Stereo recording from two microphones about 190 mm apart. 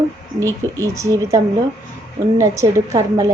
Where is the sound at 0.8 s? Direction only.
15° right (ahead or behind).